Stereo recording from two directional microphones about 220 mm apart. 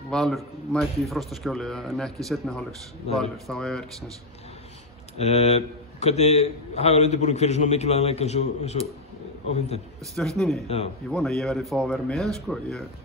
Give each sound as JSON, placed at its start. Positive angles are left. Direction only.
{"t": 0.1, "sound": "a man's voice", "side_deg": 0}
{"t": 5.1, "sound": "a man's voice", "side_deg": 30}
{"t": 10.1, "sound": "a man's voice", "side_deg": 0}